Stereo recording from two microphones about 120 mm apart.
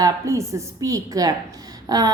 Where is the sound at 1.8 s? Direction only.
30° right (ahead or behind).